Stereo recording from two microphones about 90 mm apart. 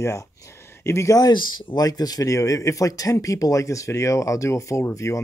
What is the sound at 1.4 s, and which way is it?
Speech, 60° left (ahead or behind).